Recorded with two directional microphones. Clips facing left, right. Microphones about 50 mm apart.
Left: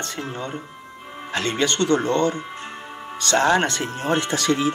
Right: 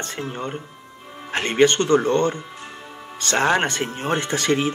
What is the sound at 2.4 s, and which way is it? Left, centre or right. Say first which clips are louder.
Music: left 3 dB; left.